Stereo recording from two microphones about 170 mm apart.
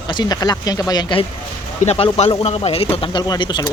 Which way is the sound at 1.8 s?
35° left (ahead or behind).